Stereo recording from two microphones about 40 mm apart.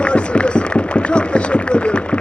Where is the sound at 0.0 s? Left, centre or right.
Left.